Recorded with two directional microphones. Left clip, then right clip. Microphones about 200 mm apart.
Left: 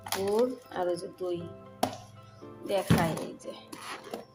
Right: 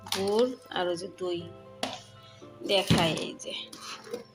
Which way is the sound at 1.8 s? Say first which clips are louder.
Left 3 dB; 65° left (ahead or behind).